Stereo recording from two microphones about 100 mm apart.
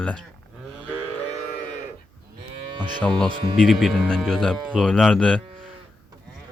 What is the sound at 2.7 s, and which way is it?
Moo, 50° right (ahead or behind).